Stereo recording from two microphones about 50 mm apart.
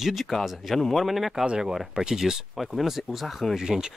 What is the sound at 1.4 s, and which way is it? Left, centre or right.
Speech, centre.